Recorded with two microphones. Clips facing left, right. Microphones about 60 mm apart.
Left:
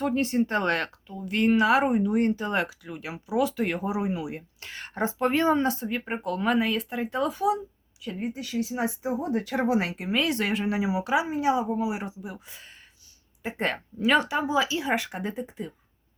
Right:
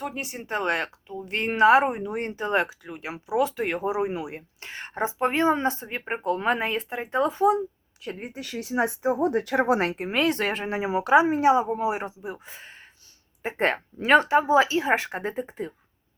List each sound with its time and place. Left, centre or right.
0.0 s speech: centre
1.2 s speech: right
8.0 s speech: right
10.0 s speech: right